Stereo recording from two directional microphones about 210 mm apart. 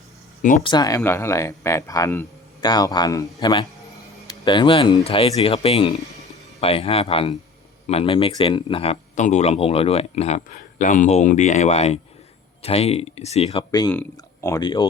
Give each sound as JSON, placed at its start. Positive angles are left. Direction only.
{"t": 0.6, "sound": "speech", "side_deg": 20}
{"t": 13.7, "sound": "speech", "side_deg": 15}